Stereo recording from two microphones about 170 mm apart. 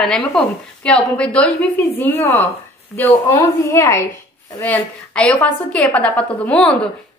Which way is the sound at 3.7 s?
15° left (ahead or behind).